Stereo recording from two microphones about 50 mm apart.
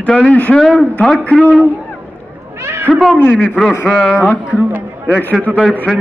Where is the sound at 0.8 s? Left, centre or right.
Centre.